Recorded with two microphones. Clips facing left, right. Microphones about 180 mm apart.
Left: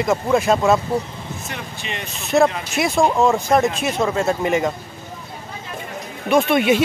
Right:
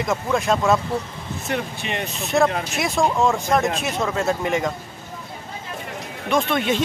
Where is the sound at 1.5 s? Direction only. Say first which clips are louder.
Right 8 dB; 55° right (ahead or behind).